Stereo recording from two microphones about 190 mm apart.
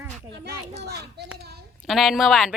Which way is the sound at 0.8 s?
60° right (ahead or behind).